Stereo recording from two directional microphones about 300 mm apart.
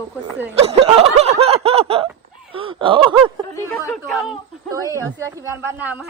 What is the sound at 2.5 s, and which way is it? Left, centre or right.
Speech, centre.